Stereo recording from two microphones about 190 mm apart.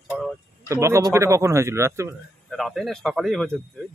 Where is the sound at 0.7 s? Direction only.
15° right (ahead or behind).